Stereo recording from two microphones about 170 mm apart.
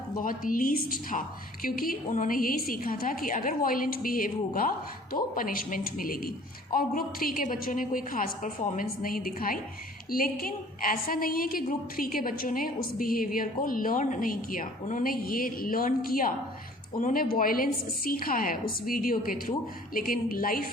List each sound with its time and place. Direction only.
0.2 s a woman's voice: 55° left (ahead or behind)